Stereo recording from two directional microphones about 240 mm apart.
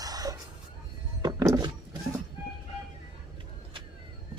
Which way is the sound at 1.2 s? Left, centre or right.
Centre.